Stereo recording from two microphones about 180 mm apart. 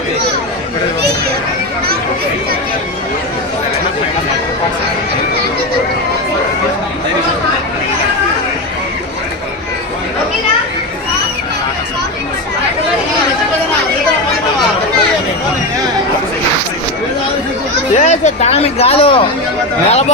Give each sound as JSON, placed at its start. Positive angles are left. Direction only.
{"t": 17.9, "sound": "speech", "side_deg": 40}